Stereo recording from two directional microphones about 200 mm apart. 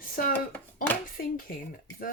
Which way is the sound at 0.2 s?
45° left (ahead or behind).